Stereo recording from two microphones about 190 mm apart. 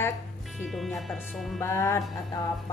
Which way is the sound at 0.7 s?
Centre (ahead or behind).